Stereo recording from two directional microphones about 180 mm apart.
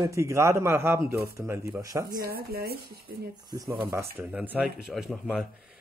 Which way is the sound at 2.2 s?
55° right (ahead or behind).